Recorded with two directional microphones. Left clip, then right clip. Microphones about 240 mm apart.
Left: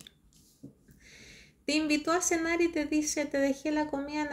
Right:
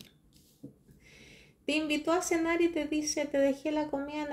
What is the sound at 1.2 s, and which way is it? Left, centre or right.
Speech, left.